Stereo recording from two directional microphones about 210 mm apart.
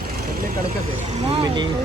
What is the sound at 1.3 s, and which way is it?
Speech, 20° right (ahead or behind).